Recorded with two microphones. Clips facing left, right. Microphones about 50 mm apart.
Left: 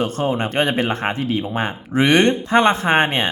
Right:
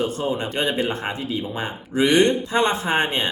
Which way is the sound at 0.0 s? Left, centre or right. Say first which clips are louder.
Left 3 dB; left.